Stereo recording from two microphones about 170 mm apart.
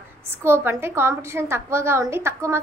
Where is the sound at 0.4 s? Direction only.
15° right (ahead or behind).